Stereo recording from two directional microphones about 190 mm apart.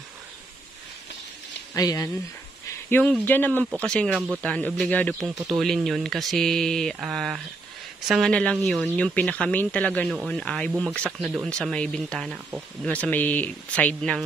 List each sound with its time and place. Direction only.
1.7 s speech: 15° left (ahead or behind); by 12.6 s 5° right (ahead or behind)
12.8 s speech: 5° left (ahead or behind)